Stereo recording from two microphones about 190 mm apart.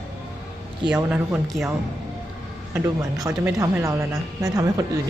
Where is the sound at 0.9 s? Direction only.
5° right (ahead or behind).